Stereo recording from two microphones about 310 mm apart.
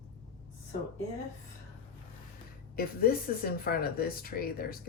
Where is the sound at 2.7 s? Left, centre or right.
Left.